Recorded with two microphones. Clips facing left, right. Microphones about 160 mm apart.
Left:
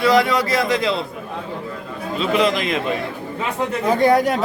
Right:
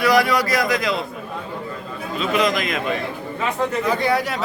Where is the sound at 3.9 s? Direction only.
50° left (ahead or behind).